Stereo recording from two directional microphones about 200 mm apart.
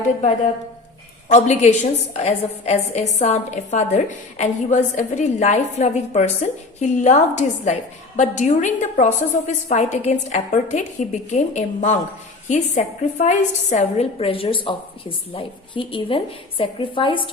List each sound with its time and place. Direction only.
1.3 s a woman's voice: 35° left (ahead or behind)